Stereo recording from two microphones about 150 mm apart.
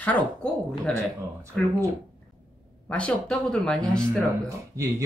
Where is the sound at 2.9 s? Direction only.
5° left (ahead or behind).